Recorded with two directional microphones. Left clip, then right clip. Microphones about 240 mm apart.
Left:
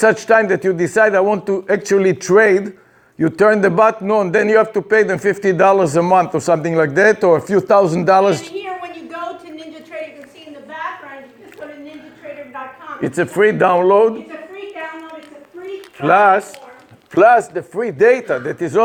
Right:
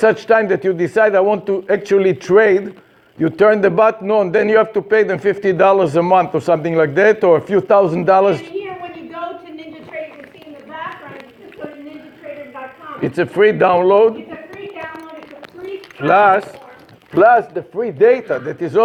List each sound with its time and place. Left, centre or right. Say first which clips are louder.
0.0 s a man's voice: even; left
13.0 s a man's voice: right 1 dB; left
16.0 s a man's voice: even; left